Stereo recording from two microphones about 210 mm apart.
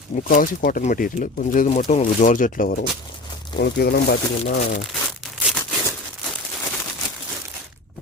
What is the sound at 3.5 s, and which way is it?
Speech, 50° left (ahead or behind).